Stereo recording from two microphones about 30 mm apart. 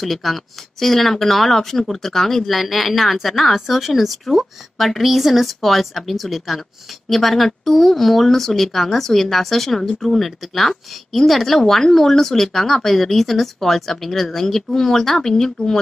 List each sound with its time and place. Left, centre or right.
0.0 s speech: centre
2.5 s a woman's voice: centre